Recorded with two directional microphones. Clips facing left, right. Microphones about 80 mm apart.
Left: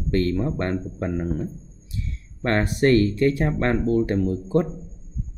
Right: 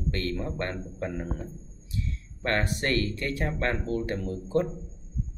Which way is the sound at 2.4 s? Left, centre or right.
Left.